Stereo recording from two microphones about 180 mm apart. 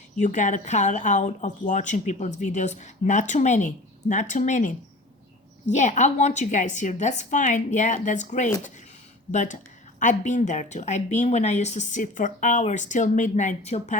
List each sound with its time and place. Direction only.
0.2 s a woman's voice: 45° left (ahead or behind)